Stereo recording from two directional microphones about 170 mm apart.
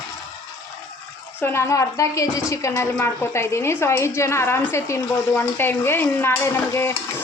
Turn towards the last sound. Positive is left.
turn(degrees=15)  # may be behind; listen again after turning